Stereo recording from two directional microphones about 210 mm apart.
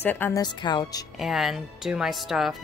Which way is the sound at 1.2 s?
Centre (ahead or behind).